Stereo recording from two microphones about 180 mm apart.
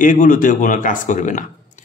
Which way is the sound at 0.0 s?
45° left (ahead or behind).